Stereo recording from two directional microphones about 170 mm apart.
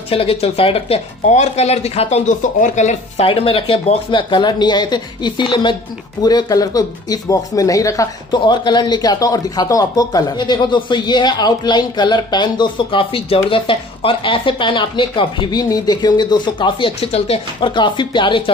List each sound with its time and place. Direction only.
0.1 s speech: 35° left (ahead or behind)